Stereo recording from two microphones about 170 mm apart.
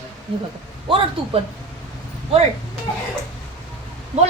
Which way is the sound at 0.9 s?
30° right (ahead or behind).